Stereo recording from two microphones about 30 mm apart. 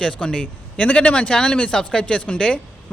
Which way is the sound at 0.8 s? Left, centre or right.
Left.